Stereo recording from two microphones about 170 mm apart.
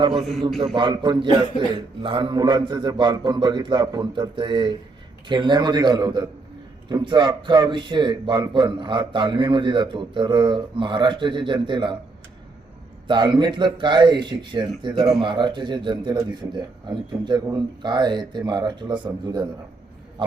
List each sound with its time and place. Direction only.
0.2 s a man's voice: centre (ahead or behind)
0.6 s a man's voice: 25° right (ahead or behind)
13.1 s a man's voice: 25° right (ahead or behind)